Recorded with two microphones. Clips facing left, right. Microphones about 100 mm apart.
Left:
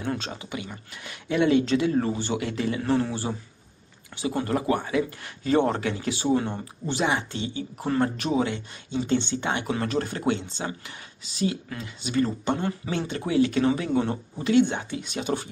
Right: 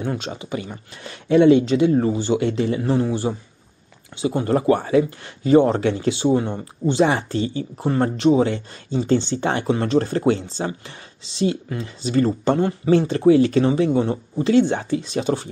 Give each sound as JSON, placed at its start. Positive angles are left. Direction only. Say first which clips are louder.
{"t": 0.0, "sound": "speech", "louder": "right 4 dB", "side_deg": -20}
{"t": 6.6, "sound": "speech", "louder": "right 8 dB", "side_deg": -30}
{"t": 7.8, "sound": "speech", "louder": "right 7 dB", "side_deg": -25}